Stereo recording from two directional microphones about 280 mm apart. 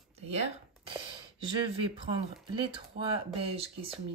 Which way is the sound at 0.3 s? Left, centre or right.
Centre.